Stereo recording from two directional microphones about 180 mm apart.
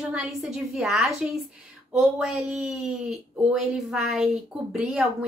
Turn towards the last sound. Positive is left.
turn(degrees=-5)  # may be behind; listen again after turning